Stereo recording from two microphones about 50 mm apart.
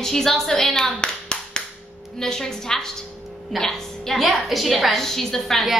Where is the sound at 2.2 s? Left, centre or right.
Centre.